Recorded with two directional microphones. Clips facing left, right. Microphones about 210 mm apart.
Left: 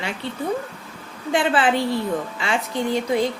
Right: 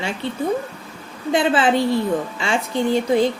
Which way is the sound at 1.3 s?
25° right (ahead or behind).